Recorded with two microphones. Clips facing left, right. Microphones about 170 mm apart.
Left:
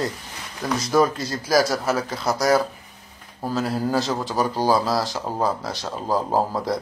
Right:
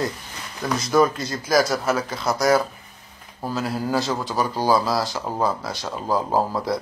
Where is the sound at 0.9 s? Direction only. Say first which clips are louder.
Right 1 dB; 35° left (ahead or behind).